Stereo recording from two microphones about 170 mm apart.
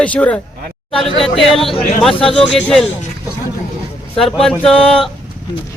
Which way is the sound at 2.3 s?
5° left (ahead or behind).